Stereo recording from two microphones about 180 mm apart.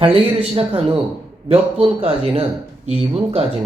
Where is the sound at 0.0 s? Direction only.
30° right (ahead or behind).